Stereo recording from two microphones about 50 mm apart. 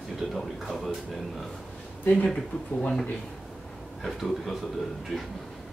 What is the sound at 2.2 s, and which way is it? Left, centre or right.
Speech, centre.